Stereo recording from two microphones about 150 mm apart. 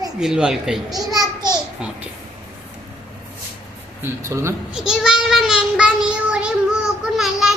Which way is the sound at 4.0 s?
20° right (ahead or behind).